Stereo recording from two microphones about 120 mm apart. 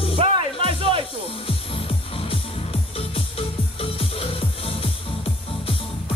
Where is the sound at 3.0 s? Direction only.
55° left (ahead or behind).